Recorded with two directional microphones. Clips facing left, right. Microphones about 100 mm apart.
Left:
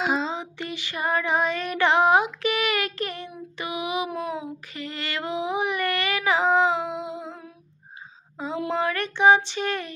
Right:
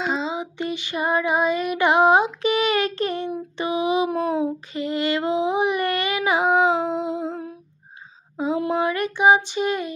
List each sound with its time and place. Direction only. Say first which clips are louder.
0.0 s a sound: even; centre (ahead or behind)
0.3 s female singing: right 6 dB; 20° right (ahead or behind)
3.6 s a sound: right 7 dB; 30° right (ahead or behind)
4.1 s child singing: right 8 dB; 35° right (ahead or behind)
4.7 s child singing: right 7 dB; 20° right (ahead or behind)
8.4 s female singing: right 7 dB; 15° right (ahead or behind)
8.7 s child singing: right 3 dB; 15° right (ahead or behind)